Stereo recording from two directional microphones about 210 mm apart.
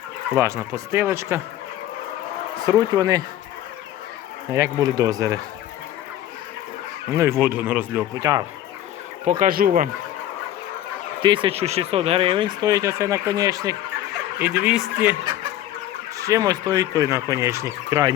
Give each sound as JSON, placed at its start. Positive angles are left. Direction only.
{"t": 0.3, "sound": "speech", "side_deg": -15}
{"t": 2.6, "sound": "speech", "side_deg": -15}
{"t": 4.5, "sound": "speech", "side_deg": -15}
{"t": 7.2, "sound": "speech", "side_deg": -10}
{"t": 8.2, "sound": "speech", "side_deg": -20}
{"t": 9.4, "sound": "speech", "side_deg": -45}
{"t": 11.2, "sound": "speech", "side_deg": -25}
{"t": 16.1, "sound": "speech", "side_deg": -15}